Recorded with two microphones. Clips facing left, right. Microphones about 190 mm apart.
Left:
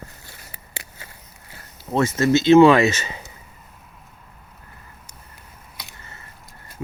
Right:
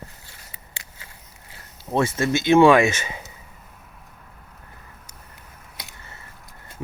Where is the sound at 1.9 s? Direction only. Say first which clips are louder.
Left 3 dB; 15° right (ahead or behind).